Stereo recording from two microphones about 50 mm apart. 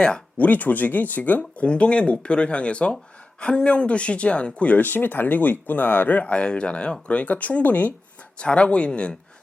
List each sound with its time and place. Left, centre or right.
0.3 s speech: left
6.2 s speech: left
8.4 s speech: left